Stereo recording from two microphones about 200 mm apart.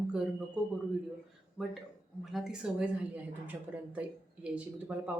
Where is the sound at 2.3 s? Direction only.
Centre (ahead or behind).